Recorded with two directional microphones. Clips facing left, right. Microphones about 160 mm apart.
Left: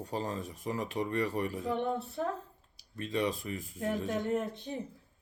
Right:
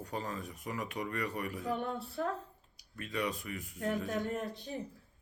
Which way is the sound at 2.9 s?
25° left (ahead or behind).